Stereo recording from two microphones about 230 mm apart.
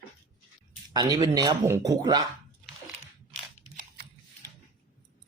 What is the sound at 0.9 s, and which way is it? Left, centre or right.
Speech, centre.